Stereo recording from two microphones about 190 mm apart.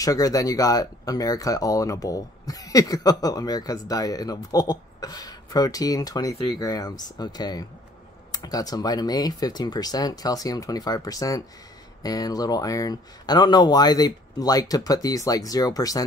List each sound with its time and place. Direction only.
0.0 s speech: 20° left (ahead or behind)